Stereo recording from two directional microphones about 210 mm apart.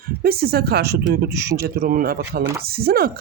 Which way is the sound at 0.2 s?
45° right (ahead or behind).